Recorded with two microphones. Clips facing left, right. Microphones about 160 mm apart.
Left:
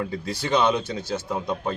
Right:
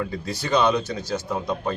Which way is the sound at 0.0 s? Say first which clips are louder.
Even; 25° left (ahead or behind).